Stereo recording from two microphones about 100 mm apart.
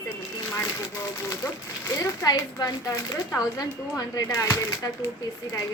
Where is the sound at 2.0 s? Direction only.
35° left (ahead or behind).